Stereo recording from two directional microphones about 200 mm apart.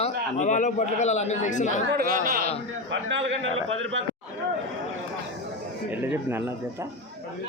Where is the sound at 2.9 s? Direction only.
65° right (ahead or behind).